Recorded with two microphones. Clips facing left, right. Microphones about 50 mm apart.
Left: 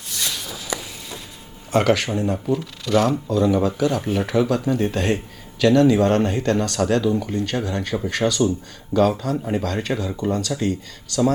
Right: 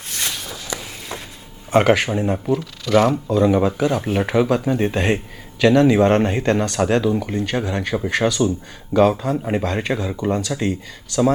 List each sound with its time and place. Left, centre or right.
0.1 s walk: right
0.3 s walk: centre
1.7 s a man's voice: right
2.5 s speech: centre
3.2 s a man's voice: right